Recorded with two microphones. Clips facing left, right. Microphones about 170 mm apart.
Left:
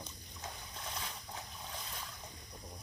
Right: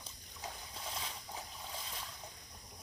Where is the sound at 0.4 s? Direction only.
5° right (ahead or behind).